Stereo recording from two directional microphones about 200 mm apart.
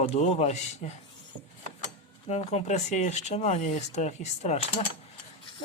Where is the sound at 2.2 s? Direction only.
30° left (ahead or behind).